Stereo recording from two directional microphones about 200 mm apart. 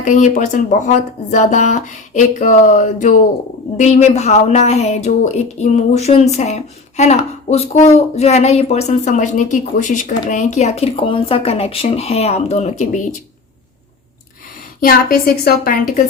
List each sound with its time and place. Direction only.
0.0 s speech: 40° left (ahead or behind)
14.8 s a woman's voice: 45° left (ahead or behind)